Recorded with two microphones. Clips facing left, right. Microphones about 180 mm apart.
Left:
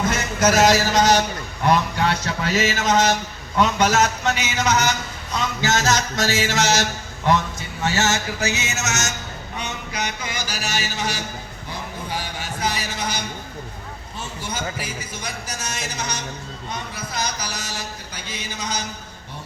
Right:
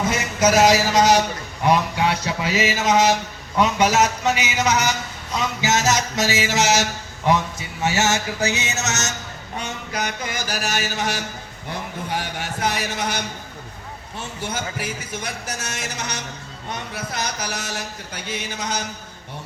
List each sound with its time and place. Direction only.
0.1 s mantra: 10° right (ahead or behind)
7.9 s mantra: 10° right (ahead or behind)
9.6 s mantra: 45° right (ahead or behind)
11.7 s a sound: 60° right (ahead or behind)
14.2 s a man's voice: 60° right (ahead or behind)